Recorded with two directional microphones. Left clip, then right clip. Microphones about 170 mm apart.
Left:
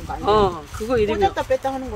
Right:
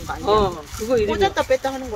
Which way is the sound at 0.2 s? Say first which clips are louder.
Left 1 dB; 50° left (ahead or behind).